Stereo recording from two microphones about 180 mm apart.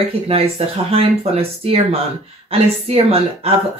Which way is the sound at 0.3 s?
35° right (ahead or behind).